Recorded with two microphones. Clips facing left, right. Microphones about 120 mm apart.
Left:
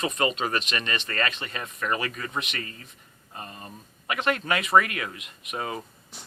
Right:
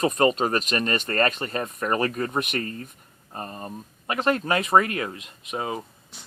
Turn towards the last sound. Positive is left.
turn(degrees=-20)  # may be behind; listen again after turning